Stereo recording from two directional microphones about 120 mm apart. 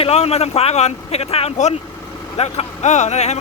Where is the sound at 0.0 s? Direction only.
55° left (ahead or behind).